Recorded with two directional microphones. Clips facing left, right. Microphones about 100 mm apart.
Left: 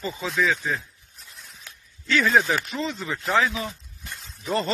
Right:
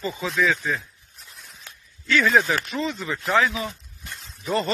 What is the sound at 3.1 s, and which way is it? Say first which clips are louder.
Speech: right 1 dB; 30° left (ahead or behind).